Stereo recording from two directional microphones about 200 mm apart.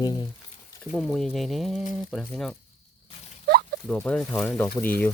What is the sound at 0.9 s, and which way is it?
Speech, 5° left (ahead or behind).